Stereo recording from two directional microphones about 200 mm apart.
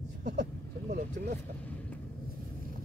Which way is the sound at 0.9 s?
40° right (ahead or behind).